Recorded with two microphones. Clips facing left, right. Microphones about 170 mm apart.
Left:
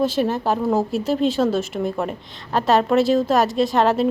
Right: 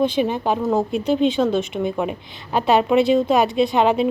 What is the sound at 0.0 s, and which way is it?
Speech, centre (ahead or behind).